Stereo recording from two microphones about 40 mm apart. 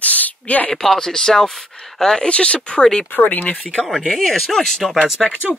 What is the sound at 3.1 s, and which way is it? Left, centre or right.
Speech, left.